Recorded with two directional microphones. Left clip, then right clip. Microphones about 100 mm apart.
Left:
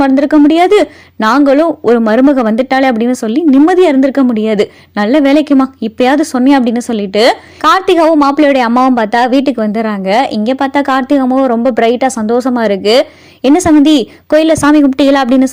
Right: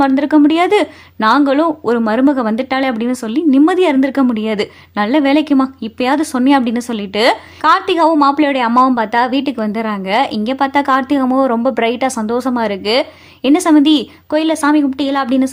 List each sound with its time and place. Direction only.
0.0 s speech: 30° left (ahead or behind)
7.6 s a woman's voice: 45° left (ahead or behind)